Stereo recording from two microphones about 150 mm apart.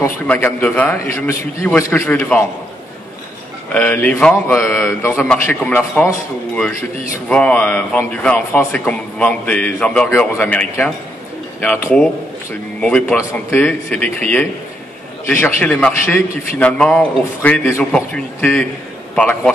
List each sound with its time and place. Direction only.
0.3 s a man's voice: 10° left (ahead or behind)
3.7 s a man's voice: 10° left (ahead or behind)
7.2 s a man's voice: 5° left (ahead or behind)